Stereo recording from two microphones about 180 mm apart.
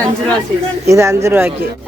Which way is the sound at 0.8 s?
15° right (ahead or behind).